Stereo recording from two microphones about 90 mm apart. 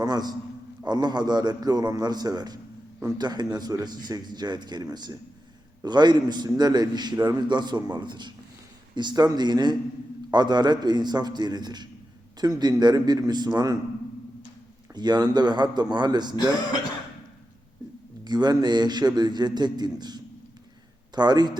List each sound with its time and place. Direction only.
0.0 s a man's voice: 50° right (ahead or behind)
7.4 s a man's voice: 55° right (ahead or behind)
14.9 s a man's voice: 50° right (ahead or behind)
16.3 s speech: 50° left (ahead or behind)
18.3 s a man's voice: 50° right (ahead or behind)